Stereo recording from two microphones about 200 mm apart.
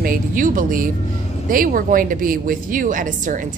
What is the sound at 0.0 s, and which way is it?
Speech, 45° right (ahead or behind).